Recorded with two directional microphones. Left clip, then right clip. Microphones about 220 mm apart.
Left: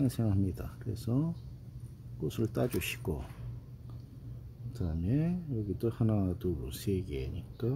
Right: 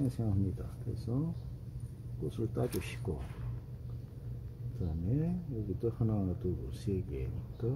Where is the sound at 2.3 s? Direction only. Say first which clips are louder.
Left 3 dB; 45° left (ahead or behind).